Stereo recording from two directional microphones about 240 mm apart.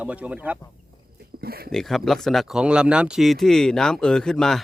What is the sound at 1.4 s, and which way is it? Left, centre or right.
Speech, right.